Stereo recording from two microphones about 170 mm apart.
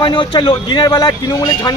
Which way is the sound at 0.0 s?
25° left (ahead or behind).